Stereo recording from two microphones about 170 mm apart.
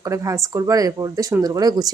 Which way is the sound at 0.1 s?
20° right (ahead or behind).